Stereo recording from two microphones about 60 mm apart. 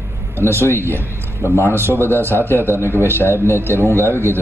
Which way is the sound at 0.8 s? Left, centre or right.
Right.